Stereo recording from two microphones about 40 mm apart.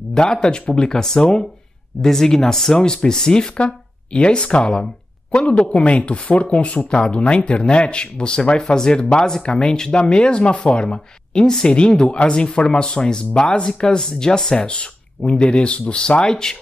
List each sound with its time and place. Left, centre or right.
0.1 s speech: centre
3.5 s speech: left
14.7 s speech: left